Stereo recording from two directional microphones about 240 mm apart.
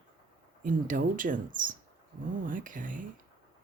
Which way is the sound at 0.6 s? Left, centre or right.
Right.